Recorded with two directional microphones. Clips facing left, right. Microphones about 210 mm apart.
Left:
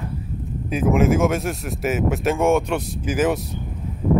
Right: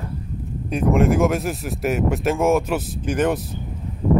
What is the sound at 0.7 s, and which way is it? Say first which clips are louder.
Speech: even; 5° left (ahead or behind).